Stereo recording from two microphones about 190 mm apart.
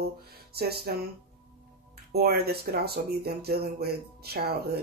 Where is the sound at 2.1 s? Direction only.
55° right (ahead or behind).